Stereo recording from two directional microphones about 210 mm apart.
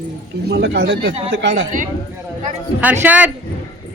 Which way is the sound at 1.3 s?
60° right (ahead or behind).